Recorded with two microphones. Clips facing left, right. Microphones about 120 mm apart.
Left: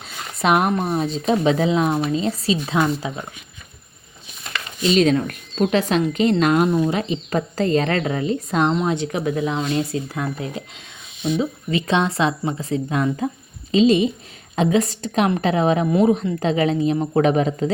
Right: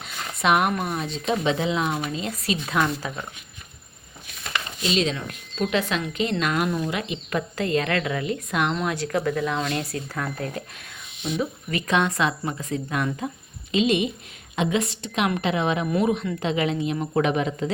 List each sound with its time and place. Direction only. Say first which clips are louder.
0.4 s speech: left 3 dB; 35° left (ahead or behind)
4.9 s speech: left 10 dB; 50° left (ahead or behind)